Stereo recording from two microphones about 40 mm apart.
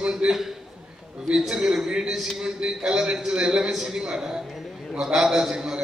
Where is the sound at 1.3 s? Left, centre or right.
Centre.